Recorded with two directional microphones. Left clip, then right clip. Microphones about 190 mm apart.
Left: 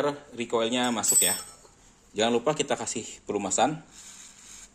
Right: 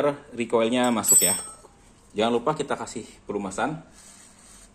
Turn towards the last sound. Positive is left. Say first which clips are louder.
# left 3 dB
turn(degrees=35)  # may be behind; listen again after turning